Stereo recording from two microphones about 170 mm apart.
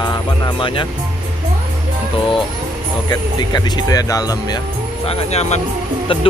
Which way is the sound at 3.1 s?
25° left (ahead or behind).